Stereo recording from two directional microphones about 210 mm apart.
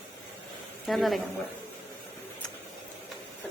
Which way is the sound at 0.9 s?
Centre (ahead or behind).